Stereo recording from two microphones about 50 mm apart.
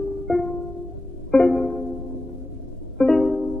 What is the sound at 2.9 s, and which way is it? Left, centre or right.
Music, centre.